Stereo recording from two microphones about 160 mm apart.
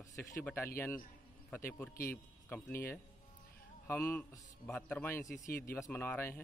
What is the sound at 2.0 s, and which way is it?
Speech, 15° left (ahead or behind).